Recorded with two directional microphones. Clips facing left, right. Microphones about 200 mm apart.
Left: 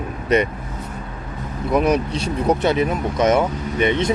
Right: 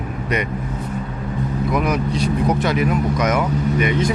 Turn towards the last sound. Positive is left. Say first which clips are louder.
# right 1 dB
turn(degrees=25)  # may be behind; listen again after turning